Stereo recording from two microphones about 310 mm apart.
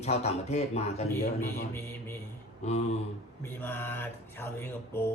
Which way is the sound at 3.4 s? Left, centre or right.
Centre.